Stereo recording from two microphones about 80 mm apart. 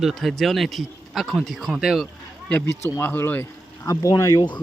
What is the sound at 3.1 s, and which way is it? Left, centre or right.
Speech, left.